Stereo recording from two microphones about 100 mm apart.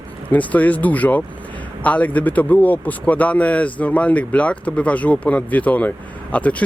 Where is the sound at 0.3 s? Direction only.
15° left (ahead or behind).